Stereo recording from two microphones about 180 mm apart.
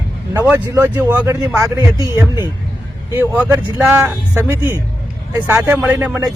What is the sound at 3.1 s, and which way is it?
Speech, 10° right (ahead or behind).